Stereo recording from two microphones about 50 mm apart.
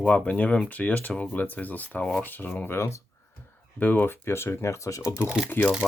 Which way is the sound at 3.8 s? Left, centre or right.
Left.